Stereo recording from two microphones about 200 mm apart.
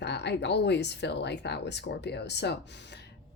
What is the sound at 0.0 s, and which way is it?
Speech, 60° left (ahead or behind).